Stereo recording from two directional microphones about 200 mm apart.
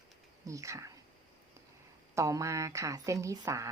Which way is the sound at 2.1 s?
15° right (ahead or behind).